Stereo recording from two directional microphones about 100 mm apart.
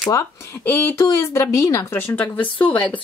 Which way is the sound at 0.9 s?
30° left (ahead or behind).